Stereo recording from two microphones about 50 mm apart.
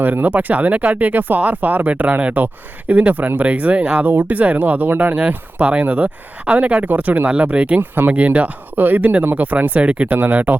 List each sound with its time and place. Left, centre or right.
0.0 s speech: right
4.0 s speech: right
7.8 s speech: right
8.1 s speech: right